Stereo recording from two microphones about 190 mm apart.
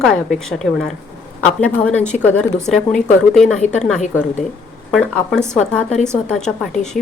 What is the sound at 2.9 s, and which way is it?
Speech, 40° left (ahead or behind).